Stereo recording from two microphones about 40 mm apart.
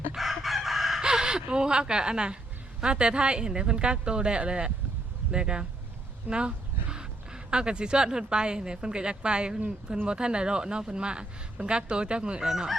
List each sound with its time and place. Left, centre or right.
0.2 s chicken: centre
1.0 s gasp: centre
1.5 s speech: right
6.3 s speech: right
6.9 s speech: right
12.4 s speech: centre